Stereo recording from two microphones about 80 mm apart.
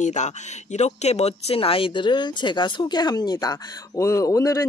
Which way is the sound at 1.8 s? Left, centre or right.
Left.